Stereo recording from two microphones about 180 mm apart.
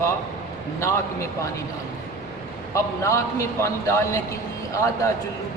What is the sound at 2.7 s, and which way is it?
A man's voice, 15° left (ahead or behind).